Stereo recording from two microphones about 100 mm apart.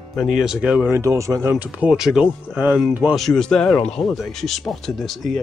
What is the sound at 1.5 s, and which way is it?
Speech, 10° right (ahead or behind).